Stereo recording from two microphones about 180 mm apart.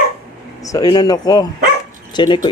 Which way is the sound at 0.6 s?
20° left (ahead or behind).